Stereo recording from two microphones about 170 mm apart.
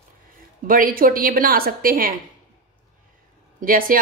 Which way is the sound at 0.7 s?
55° right (ahead or behind).